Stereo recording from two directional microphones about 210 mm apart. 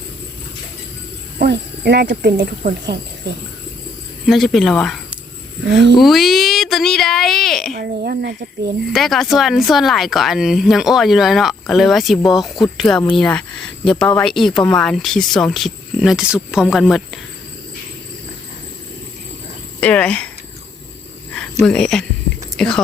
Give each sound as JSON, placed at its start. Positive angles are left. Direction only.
{"t": 1.4, "sound": "speech", "side_deg": -50}
{"t": 4.3, "sound": "speech", "side_deg": 0}
{"t": 5.6, "sound": "speech", "side_deg": -55}
{"t": 6.0, "sound": "speech", "side_deg": 0}
{"t": 7.8, "sound": "speech", "side_deg": -45}
{"t": 8.9, "sound": "speech", "side_deg": 0}
{"t": 19.8, "sound": "speech", "side_deg": 5}
{"t": 21.6, "sound": "speech", "side_deg": 5}